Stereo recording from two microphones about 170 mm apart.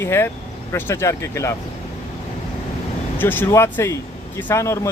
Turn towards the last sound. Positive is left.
turn(degrees=15)  # may be behind; listen again after turning